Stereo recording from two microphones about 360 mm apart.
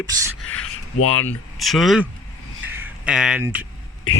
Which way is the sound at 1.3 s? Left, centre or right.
Centre.